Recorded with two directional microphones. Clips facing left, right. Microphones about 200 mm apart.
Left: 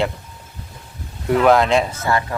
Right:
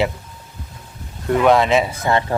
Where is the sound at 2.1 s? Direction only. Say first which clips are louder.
Right 2 dB; 25° right (ahead or behind).